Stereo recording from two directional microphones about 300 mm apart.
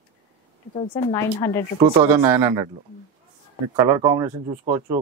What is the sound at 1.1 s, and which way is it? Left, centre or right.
Speech, centre.